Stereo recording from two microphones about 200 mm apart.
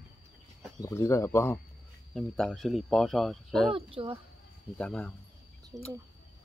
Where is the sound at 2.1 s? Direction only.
Centre (ahead or behind).